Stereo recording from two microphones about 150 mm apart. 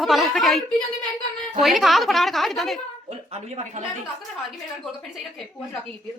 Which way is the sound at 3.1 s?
45° right (ahead or behind).